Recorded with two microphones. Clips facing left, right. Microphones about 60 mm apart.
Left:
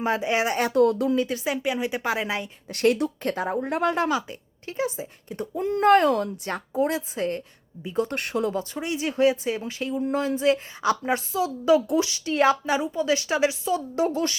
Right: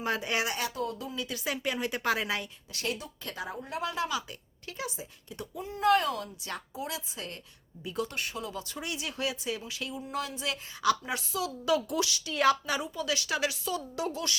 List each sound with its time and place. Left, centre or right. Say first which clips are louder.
0.0 s a woman's voice: left 7 dB; left
0.7 s speech: left 15 dB; left
1.1 s speech: left 12 dB; left
1.5 s a woman's voice: left 6 dB; centre
2.6 s speech: left 18 dB; left
4.3 s speech: left 7 dB; left
8.1 s speech: left 10 dB; left
8.5 s speech: left 9 dB; left